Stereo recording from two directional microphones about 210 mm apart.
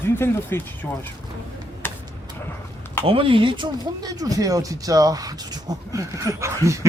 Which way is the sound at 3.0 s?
25° right (ahead or behind).